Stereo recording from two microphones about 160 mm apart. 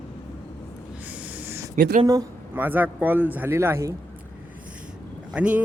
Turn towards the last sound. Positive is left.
turn(degrees=-5)  # may be behind; listen again after turning